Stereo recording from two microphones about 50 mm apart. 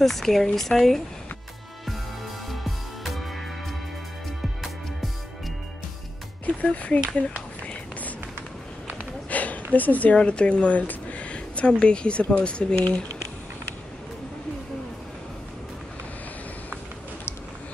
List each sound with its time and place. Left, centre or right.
0.0 s speech: centre
2.5 s music: centre
6.4 s speech: left
7.2 s a sound: left
9.3 s a sound: left
10.1 s speech: left